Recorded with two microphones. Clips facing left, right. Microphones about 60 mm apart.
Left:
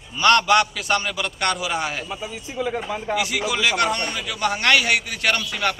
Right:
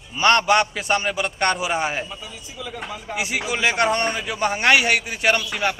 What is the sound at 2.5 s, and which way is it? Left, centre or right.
Speech, left.